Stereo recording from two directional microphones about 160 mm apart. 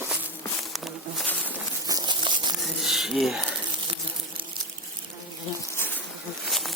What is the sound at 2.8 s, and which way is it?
Speech, centre (ahead or behind).